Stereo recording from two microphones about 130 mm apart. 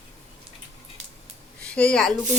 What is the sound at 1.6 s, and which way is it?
Speech, 10° left (ahead or behind).